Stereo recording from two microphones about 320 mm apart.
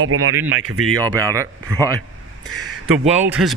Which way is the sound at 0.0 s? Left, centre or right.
Right.